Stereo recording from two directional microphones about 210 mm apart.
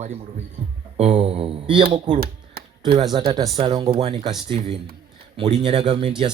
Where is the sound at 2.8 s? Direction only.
25° right (ahead or behind).